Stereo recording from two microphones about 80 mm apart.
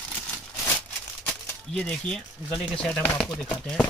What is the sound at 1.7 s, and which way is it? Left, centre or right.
Speech, centre.